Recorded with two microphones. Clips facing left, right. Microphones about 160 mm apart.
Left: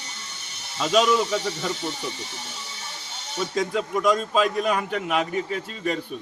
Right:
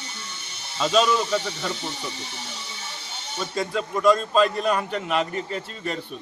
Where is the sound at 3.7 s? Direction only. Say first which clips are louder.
Right 4 dB; 15° left (ahead or behind).